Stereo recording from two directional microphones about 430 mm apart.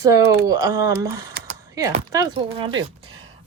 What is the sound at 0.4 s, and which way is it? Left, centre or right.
Speech, centre.